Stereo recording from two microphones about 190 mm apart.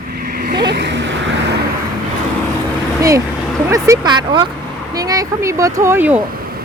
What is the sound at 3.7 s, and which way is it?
Hoot, 15° right (ahead or behind).